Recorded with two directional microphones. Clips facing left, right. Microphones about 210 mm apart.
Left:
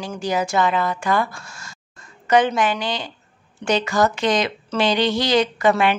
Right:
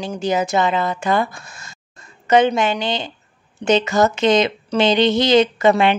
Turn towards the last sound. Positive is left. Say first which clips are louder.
# right 3 dB
turn(degrees=-25)  # may be behind; listen again after turning